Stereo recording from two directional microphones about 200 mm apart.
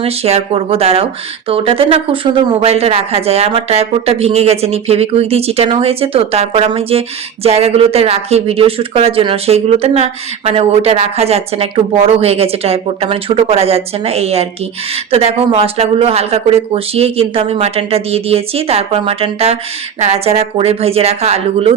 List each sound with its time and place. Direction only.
0.0 s speech: 30° right (ahead or behind)